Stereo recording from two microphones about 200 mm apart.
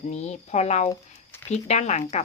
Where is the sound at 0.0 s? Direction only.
35° left (ahead or behind).